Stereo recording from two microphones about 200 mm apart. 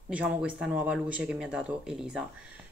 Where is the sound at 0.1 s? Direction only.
5° right (ahead or behind).